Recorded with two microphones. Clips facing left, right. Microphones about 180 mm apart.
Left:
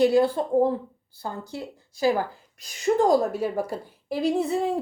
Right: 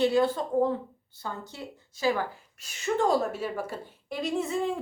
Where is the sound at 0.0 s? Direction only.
35° left (ahead or behind).